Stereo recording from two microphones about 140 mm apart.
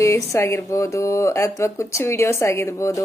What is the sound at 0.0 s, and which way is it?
Speech, 20° left (ahead or behind).